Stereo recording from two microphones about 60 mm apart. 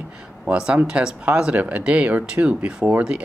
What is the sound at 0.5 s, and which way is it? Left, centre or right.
Speech, centre.